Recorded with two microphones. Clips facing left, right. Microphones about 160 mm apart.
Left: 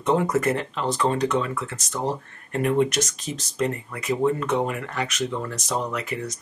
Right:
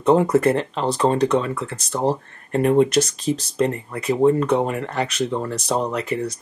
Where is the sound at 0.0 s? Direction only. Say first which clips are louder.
Right 6 dB; 30° right (ahead or behind).